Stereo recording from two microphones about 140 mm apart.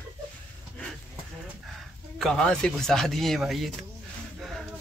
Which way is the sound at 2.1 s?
5° left (ahead or behind).